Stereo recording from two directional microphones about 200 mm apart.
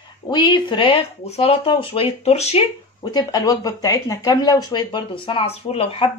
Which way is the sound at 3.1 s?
20° left (ahead or behind).